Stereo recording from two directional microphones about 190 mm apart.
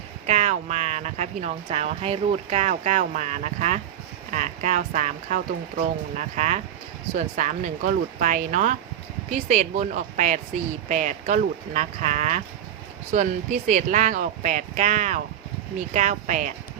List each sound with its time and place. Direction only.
0.3 s speech: 35° right (ahead or behind)